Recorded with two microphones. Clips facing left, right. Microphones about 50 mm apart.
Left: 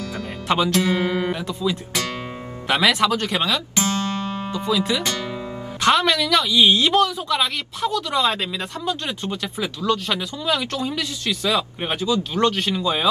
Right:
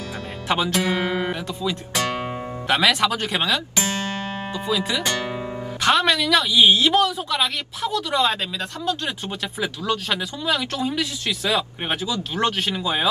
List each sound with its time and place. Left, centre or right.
0.5 s speech: centre
0.7 s speech: right
1.0 s speech: centre
2.7 s speech: centre
3.3 s guitar: right
4.5 s speech: centre